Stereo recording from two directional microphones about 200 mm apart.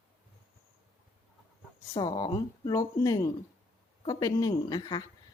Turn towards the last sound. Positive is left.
turn(degrees=20)  # may be behind; listen again after turning